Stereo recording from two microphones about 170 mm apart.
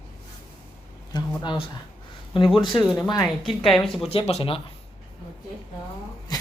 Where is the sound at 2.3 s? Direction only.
30° left (ahead or behind).